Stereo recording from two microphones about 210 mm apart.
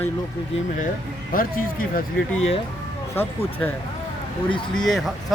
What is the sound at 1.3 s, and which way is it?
Speech, 45° left (ahead or behind).